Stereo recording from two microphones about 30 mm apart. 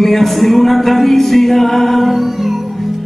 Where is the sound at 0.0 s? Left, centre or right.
Centre.